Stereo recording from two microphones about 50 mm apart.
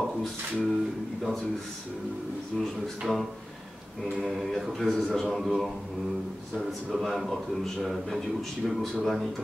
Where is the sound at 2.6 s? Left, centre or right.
Centre.